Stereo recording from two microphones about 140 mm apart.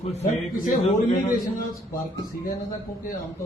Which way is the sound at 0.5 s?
85° left.